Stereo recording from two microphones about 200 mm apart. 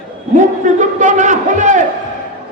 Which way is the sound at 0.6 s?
40° right (ahead or behind).